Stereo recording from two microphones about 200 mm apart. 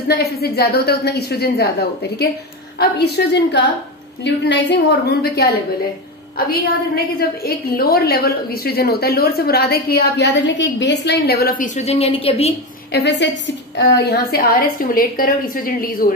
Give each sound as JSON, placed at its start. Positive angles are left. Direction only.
{"t": 0.1, "sound": "a woman's voice", "side_deg": 55}
{"t": 12.9, "sound": "a woman's voice", "side_deg": 60}